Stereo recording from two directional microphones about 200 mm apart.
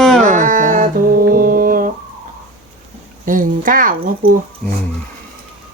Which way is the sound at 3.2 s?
40° right (ahead or behind).